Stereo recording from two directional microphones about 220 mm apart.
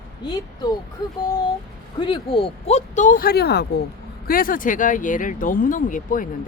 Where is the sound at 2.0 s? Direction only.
25° left (ahead or behind).